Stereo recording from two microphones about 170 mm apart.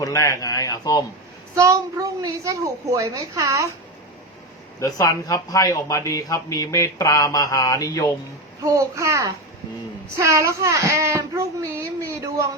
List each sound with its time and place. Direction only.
0.0 s a man's voice: 20° left (ahead or behind)
1.5 s a woman's voice: 20° right (ahead or behind)
4.8 s a man's voice: 20° left (ahead or behind)
8.6 s a woman's voice: 20° right (ahead or behind)
10.2 s a sound: 15° right (ahead or behind)